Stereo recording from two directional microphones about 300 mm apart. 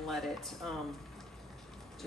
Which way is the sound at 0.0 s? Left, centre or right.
Centre.